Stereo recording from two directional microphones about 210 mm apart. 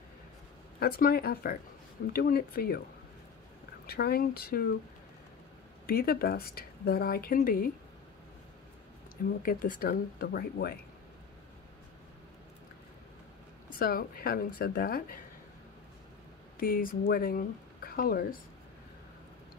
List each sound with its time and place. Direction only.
0.7 s speech: 45° left (ahead or behind)
3.8 s speech: 50° left (ahead or behind)
5.9 s speech: 45° left (ahead or behind)
9.4 s speech: 45° left (ahead or behind)
13.7 s speech: 45° left (ahead or behind)
16.5 s speech: 45° left (ahead or behind)